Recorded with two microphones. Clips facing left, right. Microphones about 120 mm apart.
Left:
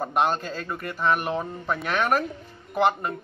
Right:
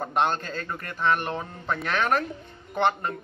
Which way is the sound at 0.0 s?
5° left (ahead or behind).